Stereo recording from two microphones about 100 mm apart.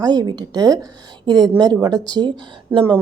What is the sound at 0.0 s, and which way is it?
A woman's voice, 40° right (ahead or behind).